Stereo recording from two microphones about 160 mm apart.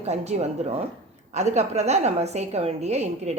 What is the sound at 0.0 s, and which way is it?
A woman's voice, 40° right (ahead or behind).